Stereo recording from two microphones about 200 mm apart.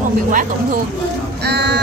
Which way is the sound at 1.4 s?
55° right (ahead or behind).